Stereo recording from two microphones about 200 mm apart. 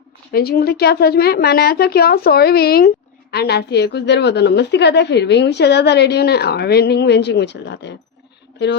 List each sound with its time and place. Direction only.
0.3 s a woman's voice: 50° left (ahead or behind)